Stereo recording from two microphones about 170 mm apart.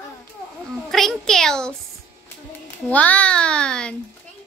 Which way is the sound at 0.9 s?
Centre (ahead or behind).